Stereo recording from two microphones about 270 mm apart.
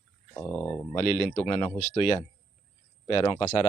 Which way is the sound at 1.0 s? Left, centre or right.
Left.